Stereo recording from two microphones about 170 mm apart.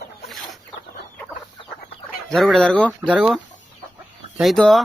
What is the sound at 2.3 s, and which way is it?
Speech, centre (ahead or behind).